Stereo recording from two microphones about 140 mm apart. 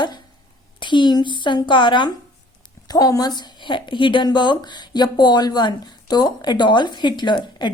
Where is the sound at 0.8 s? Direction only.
35° left (ahead or behind).